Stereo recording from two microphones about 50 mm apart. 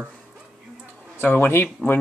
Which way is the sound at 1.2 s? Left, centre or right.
Left.